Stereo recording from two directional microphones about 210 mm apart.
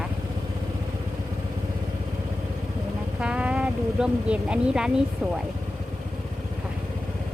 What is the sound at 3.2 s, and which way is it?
A woman's voice, 5° right (ahead or behind).